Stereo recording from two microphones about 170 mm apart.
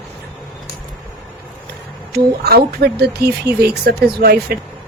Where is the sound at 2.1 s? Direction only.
70° right (ahead or behind).